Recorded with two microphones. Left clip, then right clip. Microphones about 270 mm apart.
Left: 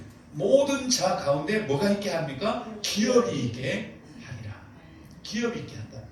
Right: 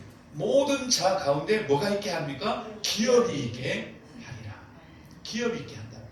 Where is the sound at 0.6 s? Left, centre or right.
Left.